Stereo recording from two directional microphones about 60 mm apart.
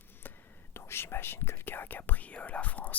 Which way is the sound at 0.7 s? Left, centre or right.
Left.